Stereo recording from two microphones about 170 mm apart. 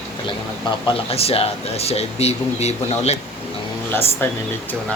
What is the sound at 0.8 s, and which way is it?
Speech, 35° left (ahead or behind).